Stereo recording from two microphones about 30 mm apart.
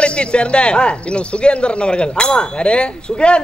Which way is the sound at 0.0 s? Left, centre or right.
Left.